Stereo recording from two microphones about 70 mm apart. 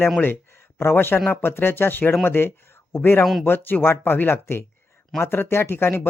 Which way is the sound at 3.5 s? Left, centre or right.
Left.